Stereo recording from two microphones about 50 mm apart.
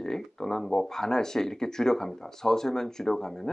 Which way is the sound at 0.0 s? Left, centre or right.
Centre.